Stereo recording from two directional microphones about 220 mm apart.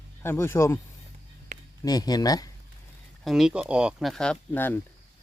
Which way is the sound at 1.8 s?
15° left (ahead or behind).